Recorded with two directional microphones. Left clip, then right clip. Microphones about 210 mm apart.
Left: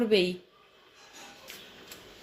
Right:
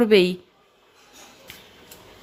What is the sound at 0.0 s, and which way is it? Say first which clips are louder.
Speech: right 8 dB; 35° right (ahead or behind).